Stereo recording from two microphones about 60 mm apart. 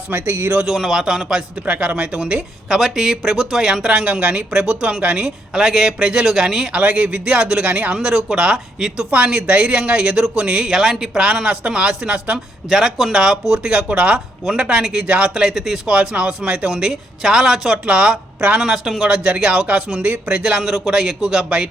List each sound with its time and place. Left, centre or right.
0.1 s speech: right
0.6 s speech: centre
1.6 s speech: right
2.1 s speech: centre
6.7 s speech: right
7.6 s speech: right
7.9 s speech: centre
10.7 s speech: centre
12.6 s speech: centre
15.0 s speech: right
15.4 s speech: centre
15.9 s speech: centre
18.6 s speech: centre
19.0 s speech: centre